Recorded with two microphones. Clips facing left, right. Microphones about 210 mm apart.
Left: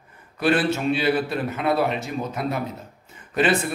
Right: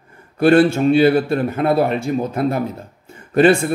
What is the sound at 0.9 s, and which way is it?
Speech, 50° right (ahead or behind).